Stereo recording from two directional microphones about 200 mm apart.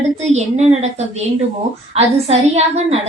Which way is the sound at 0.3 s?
35° right (ahead or behind).